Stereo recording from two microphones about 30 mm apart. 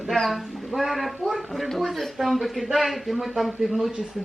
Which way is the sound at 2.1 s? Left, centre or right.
Centre.